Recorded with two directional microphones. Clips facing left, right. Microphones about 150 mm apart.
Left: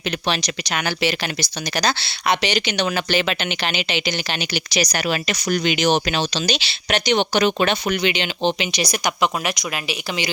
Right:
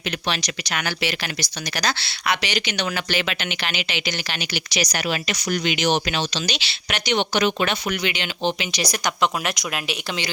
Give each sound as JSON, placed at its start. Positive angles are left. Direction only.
{"t": 0.3, "sound": "speech", "side_deg": 25}
{"t": 4.7, "sound": "speech", "side_deg": 35}